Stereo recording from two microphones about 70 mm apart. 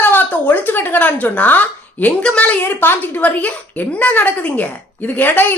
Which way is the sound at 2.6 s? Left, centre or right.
Left.